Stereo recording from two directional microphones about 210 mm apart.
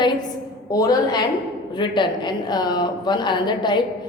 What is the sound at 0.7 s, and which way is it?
A woman's voice, 15° left (ahead or behind).